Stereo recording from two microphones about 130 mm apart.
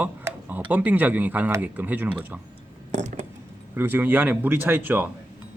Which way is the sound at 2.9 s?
65° right (ahead or behind).